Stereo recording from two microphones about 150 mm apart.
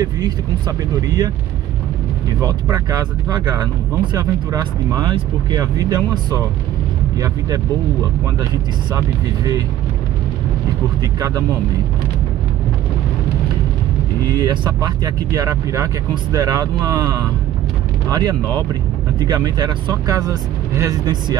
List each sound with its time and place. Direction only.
0.0 s speech: 25° right (ahead or behind)
2.4 s speech: 25° right (ahead or behind)
14.2 s speech: 25° right (ahead or behind)